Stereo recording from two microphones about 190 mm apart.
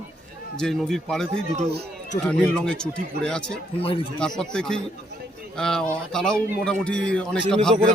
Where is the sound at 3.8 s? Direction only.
30° left (ahead or behind).